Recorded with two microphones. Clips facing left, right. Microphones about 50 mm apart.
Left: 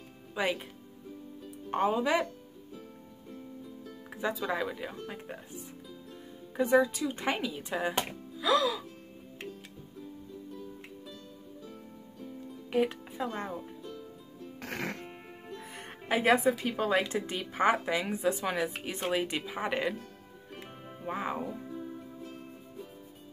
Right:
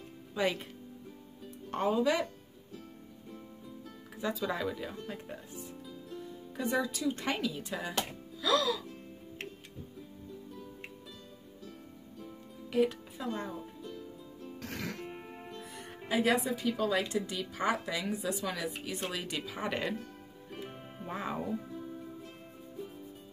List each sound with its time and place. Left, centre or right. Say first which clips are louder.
0.3 s speech: even; centre
1.7 s speech: left 1 dB; left
4.1 s music: left 2 dB; left
4.4 s speech: left 1 dB; centre
6.5 s speech: left 7 dB; left
12.7 s speech: even; left
14.6 s music: left 4 dB; left
15.7 s speech: left 2 dB; left; by 20.0 s centre
20.5 s music: right 2 dB; centre